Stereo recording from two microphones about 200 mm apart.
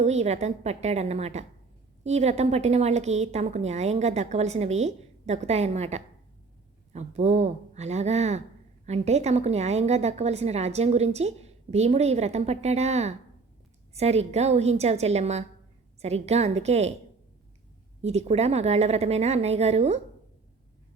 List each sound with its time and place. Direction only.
0.0 s a woman's voice: 35° right (ahead or behind)
18.0 s a woman's voice: 30° right (ahead or behind)